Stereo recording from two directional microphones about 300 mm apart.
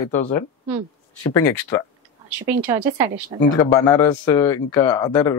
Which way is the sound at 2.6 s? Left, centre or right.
Centre.